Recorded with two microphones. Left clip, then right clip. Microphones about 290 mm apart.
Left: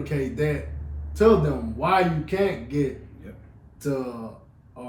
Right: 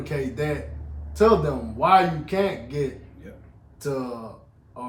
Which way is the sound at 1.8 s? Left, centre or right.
Centre.